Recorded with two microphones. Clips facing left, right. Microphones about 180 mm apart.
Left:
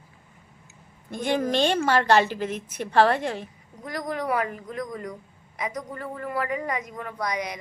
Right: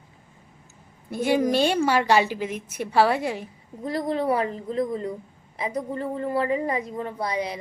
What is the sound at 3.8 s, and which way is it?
A woman's voice, 30° right (ahead or behind).